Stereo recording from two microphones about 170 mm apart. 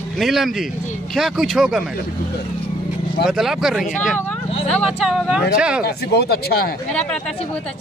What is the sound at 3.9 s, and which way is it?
Speech, 10° left (ahead or behind).